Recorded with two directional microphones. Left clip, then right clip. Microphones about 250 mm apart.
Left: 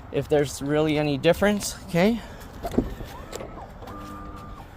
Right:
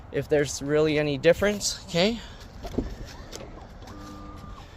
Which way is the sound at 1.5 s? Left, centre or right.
Centre.